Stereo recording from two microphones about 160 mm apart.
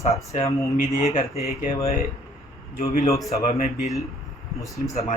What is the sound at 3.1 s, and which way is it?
Speech, centre (ahead or behind).